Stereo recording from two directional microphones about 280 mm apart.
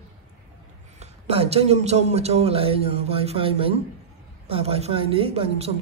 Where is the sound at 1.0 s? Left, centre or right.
Right.